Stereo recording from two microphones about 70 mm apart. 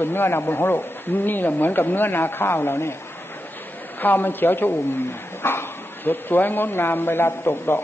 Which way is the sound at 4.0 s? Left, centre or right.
Left.